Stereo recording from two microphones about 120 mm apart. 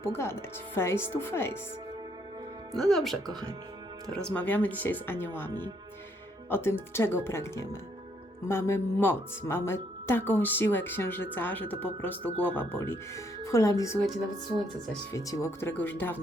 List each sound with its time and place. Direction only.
0.0 s speech: 20° left (ahead or behind)
2.7 s speech: centre (ahead or behind)
4.4 s speech: 15° left (ahead or behind)
6.5 s speech: 20° left (ahead or behind)
15.1 s speech: 25° left (ahead or behind)